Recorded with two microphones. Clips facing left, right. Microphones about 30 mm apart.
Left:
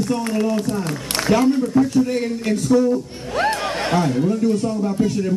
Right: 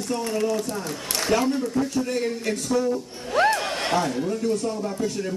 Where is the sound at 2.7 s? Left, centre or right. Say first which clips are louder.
Left 8 dB; left.